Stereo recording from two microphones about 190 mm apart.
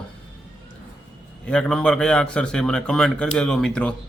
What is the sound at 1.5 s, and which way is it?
A man's voice, 5° left (ahead or behind).